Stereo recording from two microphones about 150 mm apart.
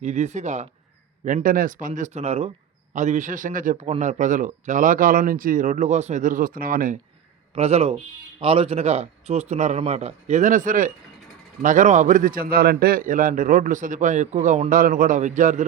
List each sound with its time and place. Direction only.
0.0 s a man's voice: 50° right (ahead or behind); by 1.9 s 65° right (ahead or behind)
1.9 s a man's voice: 50° right (ahead or behind); by 7.0 s 65° right (ahead or behind)
7.5 s a man's voice: 45° right (ahead or behind)
14.7 s a man's voice: 65° right (ahead or behind)